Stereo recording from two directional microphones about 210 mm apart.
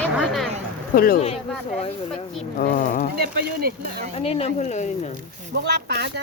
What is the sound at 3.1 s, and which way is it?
Speech, 45° right (ahead or behind).